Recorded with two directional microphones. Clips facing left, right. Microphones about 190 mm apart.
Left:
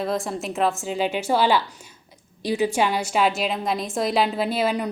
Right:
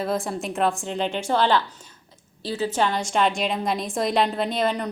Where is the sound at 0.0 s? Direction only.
Centre (ahead or behind).